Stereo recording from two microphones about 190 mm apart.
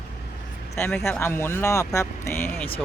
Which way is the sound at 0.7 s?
10° left (ahead or behind).